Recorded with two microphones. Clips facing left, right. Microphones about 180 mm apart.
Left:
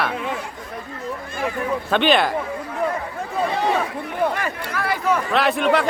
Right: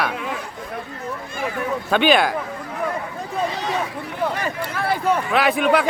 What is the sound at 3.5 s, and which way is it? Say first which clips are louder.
Chatter: left 5 dB; 55° left (ahead or behind).